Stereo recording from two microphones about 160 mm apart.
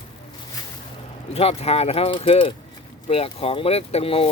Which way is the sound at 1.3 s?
40° left (ahead or behind).